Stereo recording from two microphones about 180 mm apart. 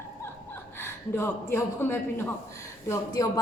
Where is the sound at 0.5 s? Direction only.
15° left (ahead or behind).